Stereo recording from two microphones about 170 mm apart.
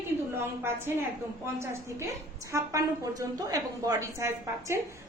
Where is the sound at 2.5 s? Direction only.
20° right (ahead or behind).